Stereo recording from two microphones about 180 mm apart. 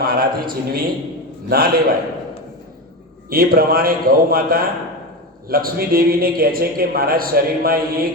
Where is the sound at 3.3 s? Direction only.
55° right (ahead or behind).